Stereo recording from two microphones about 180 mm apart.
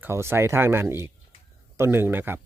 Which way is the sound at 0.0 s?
15° right (ahead or behind).